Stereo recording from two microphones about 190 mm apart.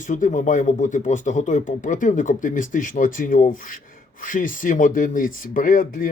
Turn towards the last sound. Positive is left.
turn(degrees=45)  # may be behind; listen again after turning